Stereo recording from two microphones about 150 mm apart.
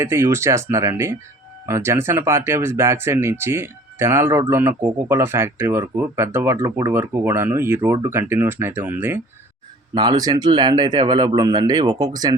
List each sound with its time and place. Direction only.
0.0 s speech: 20° right (ahead or behind)
9.9 s speech: 30° right (ahead or behind)